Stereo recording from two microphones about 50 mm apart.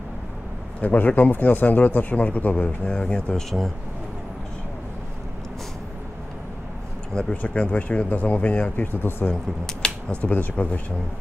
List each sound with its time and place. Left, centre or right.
0.7 s speech: left
3.3 s speech: centre
7.4 s speech: left
9.3 s speech: centre